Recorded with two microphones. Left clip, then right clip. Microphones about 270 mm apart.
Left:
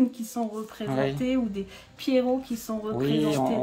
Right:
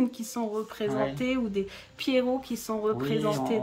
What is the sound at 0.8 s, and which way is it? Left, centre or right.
Speech, left.